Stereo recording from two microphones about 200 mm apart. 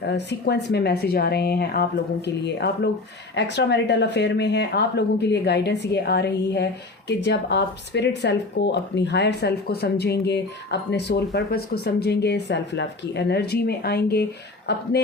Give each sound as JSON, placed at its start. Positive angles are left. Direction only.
{"t": 0.0, "sound": "speech", "side_deg": 60}